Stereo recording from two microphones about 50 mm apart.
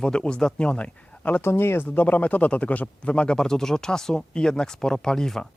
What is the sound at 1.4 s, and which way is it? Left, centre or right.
Speech, left.